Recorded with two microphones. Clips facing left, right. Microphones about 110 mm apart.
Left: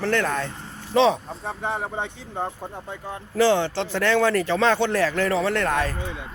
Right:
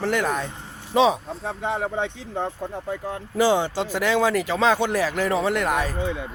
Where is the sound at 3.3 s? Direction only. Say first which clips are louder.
Left 1 dB; 15° right (ahead or behind).